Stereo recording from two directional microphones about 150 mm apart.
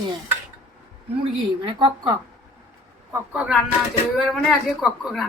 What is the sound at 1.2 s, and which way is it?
Speech, 35° right (ahead or behind).